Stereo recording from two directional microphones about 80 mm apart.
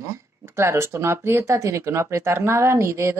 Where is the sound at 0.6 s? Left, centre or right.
Right.